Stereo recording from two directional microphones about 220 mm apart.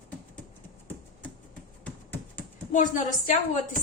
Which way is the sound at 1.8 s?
10° left (ahead or behind).